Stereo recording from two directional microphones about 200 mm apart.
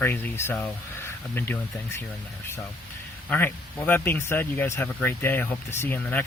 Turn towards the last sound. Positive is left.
turn(degrees=10)  # may be behind; listen again after turning